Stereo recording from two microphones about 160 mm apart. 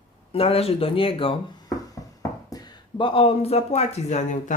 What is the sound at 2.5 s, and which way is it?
Speech, 25° left (ahead or behind).